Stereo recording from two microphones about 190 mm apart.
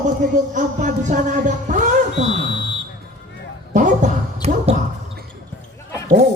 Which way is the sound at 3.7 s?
40° right (ahead or behind).